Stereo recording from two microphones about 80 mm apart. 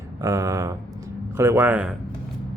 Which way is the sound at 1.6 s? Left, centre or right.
Centre.